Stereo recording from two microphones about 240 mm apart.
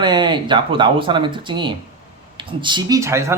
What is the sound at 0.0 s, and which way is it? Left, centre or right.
Speech, centre.